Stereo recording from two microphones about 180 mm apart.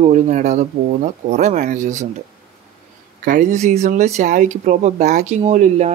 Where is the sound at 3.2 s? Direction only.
50° right (ahead or behind).